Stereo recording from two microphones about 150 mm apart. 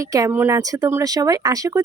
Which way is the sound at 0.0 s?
20° right (ahead or behind).